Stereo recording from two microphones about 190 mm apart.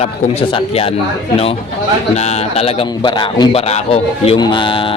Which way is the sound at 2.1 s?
35° left (ahead or behind).